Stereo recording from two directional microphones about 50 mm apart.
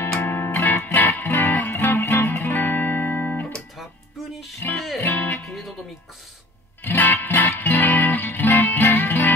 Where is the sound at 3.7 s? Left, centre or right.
Centre.